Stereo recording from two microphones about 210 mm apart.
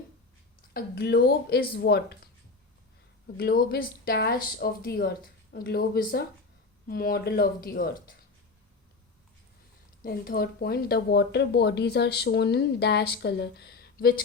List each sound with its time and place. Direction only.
0.7 s speech: 50° left (ahead or behind)
3.3 s speech: 45° left (ahead or behind)
10.0 s speech: 45° left (ahead or behind)